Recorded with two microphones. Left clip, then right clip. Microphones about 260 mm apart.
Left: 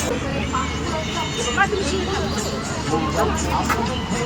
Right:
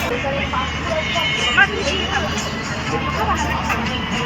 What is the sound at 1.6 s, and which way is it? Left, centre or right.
Speech, centre.